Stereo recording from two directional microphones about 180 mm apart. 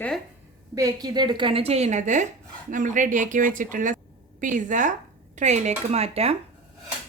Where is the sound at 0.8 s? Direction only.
20° right (ahead or behind); by 6.3 s 35° right (ahead or behind).